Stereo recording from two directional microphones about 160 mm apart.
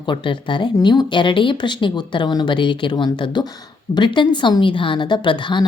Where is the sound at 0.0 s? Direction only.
30° left (ahead or behind).